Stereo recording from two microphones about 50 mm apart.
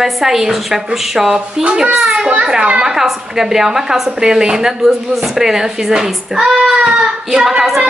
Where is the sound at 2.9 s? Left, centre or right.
Centre.